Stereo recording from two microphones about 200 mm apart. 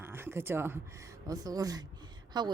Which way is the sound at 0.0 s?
10° right (ahead or behind).